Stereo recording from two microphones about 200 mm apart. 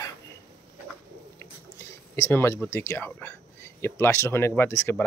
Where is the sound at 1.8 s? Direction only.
15° left (ahead or behind).